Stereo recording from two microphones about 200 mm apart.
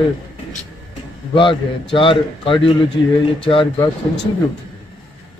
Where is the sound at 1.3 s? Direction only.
25° left (ahead or behind).